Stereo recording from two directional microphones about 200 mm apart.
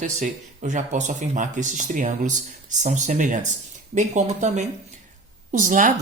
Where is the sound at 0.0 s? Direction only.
35° right (ahead or behind).